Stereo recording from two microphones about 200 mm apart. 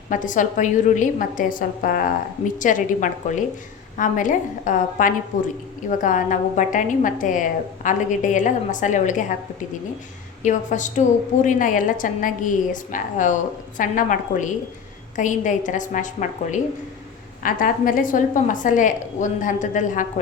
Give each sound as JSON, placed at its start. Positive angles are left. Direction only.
{"t": 0.1, "sound": "a woman's voice", "side_deg": 40}
{"t": 10.4, "sound": "a woman's voice", "side_deg": 40}